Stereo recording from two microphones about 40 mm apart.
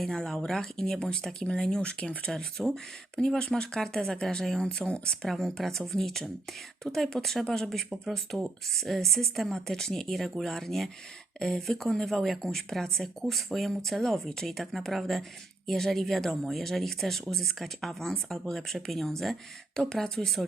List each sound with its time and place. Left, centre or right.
0.0 s speech: centre
1.8 s speech: left
10.1 s speech: centre